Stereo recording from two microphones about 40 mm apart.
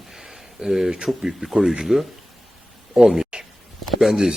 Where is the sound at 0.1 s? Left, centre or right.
Centre.